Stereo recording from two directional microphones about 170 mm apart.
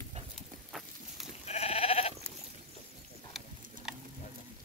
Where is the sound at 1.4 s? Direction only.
40° left (ahead or behind).